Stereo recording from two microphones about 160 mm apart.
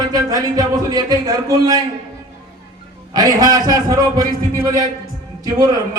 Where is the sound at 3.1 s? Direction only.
25° right (ahead or behind).